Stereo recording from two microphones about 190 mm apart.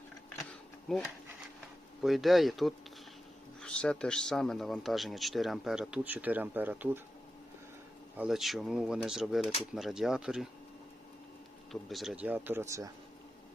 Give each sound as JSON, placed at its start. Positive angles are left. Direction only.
{"t": 0.9, "sound": "speech", "side_deg": 5}
{"t": 8.1, "sound": "speech", "side_deg": -5}
{"t": 11.7, "sound": "speech", "side_deg": 0}